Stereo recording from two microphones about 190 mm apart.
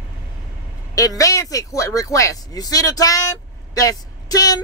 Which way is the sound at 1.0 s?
15° left (ahead or behind).